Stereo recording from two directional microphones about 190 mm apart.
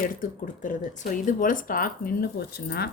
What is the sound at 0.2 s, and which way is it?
Speech, 45° left (ahead or behind).